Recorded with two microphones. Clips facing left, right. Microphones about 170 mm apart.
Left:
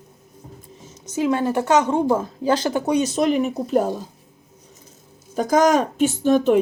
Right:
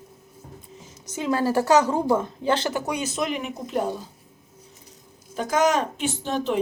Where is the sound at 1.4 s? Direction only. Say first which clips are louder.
Left 1 dB; 20° left (ahead or behind).